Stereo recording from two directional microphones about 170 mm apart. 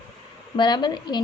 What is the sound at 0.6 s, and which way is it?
Speech, 25° left (ahead or behind).